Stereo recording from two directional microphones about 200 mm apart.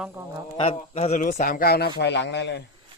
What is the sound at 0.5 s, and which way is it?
A man's voice, 25° left (ahead or behind).